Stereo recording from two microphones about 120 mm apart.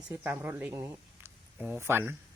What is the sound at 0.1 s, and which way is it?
A man's voice, 20° right (ahead or behind).